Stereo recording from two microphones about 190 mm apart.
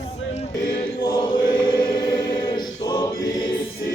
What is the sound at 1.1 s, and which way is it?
Chant, 25° left (ahead or behind).